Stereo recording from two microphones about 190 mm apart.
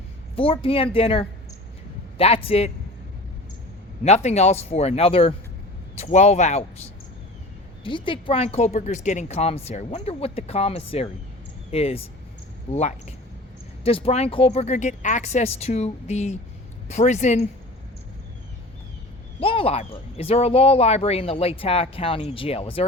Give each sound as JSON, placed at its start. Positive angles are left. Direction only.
{"t": 0.3, "sound": "speech", "side_deg": 30}
{"t": 4.0, "sound": "speech", "side_deg": 35}
{"t": 7.9, "sound": "speech", "side_deg": 25}
{"t": 19.4, "sound": "speech", "side_deg": 30}